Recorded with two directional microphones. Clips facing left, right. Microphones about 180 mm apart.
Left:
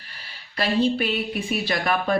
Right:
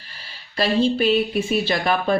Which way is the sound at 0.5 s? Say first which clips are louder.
Right 2 dB; 30° right (ahead or behind).